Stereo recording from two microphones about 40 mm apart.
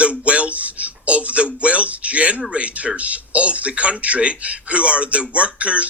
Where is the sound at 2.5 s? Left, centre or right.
Right.